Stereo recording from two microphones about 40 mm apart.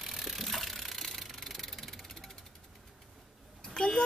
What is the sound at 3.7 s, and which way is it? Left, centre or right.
Vehicle, centre.